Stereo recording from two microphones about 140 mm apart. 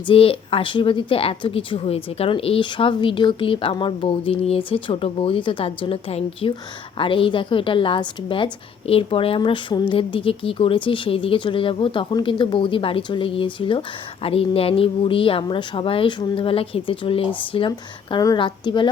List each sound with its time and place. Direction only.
0.0 s speech: 40° left (ahead or behind)
17.7 s speech: 25° left (ahead or behind)